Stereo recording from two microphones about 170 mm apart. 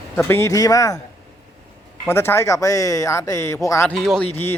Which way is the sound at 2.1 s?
15° left (ahead or behind).